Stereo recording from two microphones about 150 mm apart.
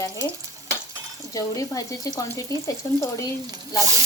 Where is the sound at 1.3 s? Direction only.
20° left (ahead or behind).